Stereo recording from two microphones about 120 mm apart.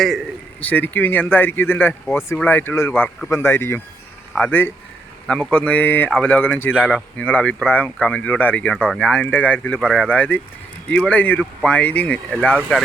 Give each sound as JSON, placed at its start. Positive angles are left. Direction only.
{"t": 0.6, "sound": "speech", "side_deg": 15}